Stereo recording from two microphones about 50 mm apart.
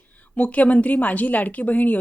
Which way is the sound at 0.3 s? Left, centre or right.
Left.